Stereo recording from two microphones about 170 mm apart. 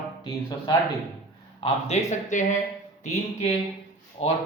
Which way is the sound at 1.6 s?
40° left (ahead or behind).